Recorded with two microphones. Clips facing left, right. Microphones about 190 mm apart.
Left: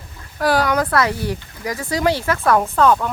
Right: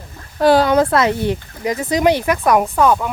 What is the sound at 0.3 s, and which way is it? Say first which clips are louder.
Speech: right 5 dB; 25° right (ahead or behind).